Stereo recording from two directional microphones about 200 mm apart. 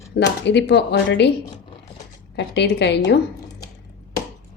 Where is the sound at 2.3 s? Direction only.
60° left (ahead or behind).